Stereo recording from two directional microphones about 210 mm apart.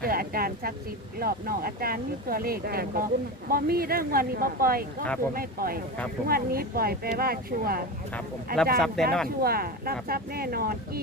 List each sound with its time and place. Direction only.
0.0 s a sound: 45° right (ahead or behind)
1.2 s speech: 45° right (ahead or behind)
9.0 s speech: 5° left (ahead or behind)
9.4 s speech: 45° right (ahead or behind)